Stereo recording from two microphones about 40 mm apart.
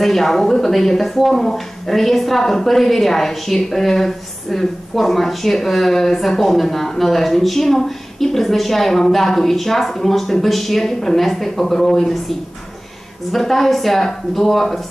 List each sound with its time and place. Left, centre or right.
0.0 s speech: centre